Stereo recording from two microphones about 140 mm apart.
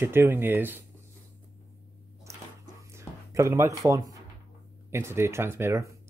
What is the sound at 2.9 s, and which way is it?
Speech, 20° right (ahead or behind).